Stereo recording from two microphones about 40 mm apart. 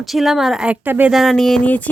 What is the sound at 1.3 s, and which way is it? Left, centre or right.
Speech, centre.